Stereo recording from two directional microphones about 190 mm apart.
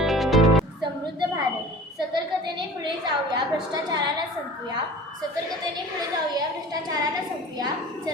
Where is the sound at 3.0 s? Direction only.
20° right (ahead or behind).